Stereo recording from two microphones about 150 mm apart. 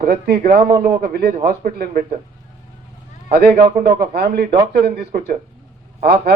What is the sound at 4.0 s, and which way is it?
A man's voice, 90° right.